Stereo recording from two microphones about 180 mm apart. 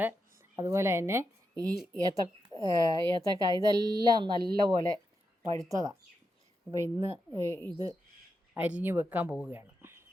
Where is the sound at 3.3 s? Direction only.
20° right (ahead or behind).